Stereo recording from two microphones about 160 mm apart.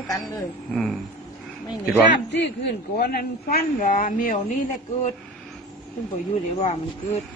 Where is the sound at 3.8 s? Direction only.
55° left (ahead or behind).